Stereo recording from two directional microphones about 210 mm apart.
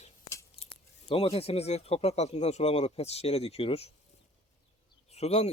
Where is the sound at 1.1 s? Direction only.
30° left (ahead or behind).